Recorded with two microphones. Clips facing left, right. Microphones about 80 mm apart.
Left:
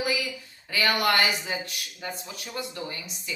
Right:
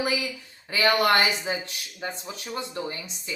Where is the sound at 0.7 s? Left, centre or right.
Right.